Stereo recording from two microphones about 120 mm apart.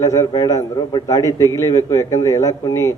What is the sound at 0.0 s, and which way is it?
A man's voice, 25° left (ahead or behind).